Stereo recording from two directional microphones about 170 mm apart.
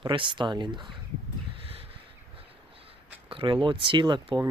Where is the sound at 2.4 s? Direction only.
35° right (ahead or behind).